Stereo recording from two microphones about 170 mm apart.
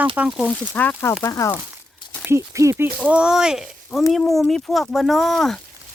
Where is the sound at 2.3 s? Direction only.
15° right (ahead or behind).